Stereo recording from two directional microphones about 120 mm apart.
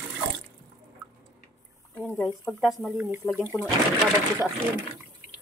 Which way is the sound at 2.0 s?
10° left (ahead or behind).